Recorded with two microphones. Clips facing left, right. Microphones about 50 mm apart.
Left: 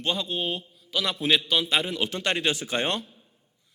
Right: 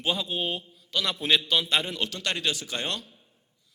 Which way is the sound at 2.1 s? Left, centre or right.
Left.